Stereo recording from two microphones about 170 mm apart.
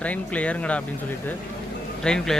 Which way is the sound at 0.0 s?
10° left (ahead or behind).